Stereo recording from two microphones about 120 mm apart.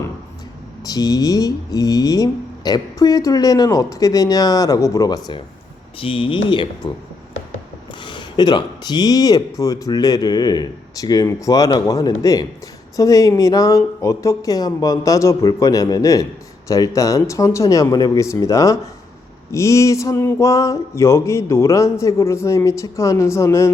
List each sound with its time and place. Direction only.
0.9 s speech: 30° left (ahead or behind)
6.0 s speech: 45° left (ahead or behind)
8.0 s speech: 40° left (ahead or behind); by 23.7 s 25° left (ahead or behind)